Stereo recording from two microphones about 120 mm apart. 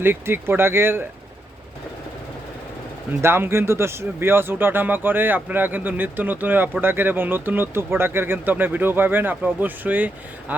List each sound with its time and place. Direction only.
0.0 s speech: 20° right (ahead or behind)
3.2 s speech: 20° right (ahead or behind)